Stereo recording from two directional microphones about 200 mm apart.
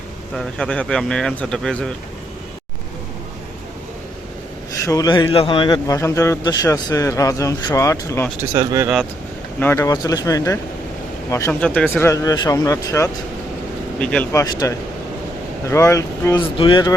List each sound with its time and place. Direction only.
0.3 s speech: 5° left (ahead or behind)
4.9 s a man's voice: 20° left (ahead or behind)
8.5 s speech: 15° right (ahead or behind)
9.6 s a man's voice: 15° left (ahead or behind)
14.4 s a man's voice: 20° left (ahead or behind)